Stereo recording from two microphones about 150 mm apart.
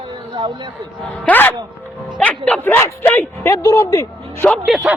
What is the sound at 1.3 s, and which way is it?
A man's voice, 10° left (ahead or behind).